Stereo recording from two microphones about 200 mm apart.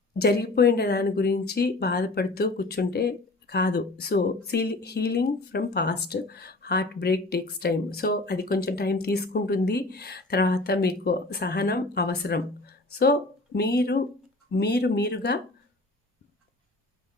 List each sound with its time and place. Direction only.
0.2 s speech: 50° left (ahead or behind)